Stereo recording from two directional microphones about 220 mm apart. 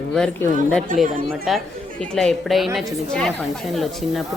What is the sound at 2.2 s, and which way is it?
Speech, centre (ahead or behind).